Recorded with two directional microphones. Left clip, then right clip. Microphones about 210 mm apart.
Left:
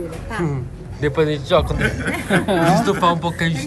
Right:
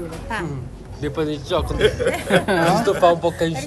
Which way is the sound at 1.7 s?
50° right (ahead or behind).